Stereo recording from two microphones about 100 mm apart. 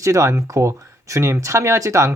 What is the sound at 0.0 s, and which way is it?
Speech, 30° right (ahead or behind).